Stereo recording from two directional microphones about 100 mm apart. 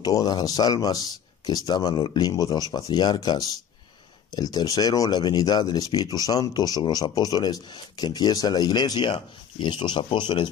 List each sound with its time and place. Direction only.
0.0 s speech: 40° left (ahead or behind)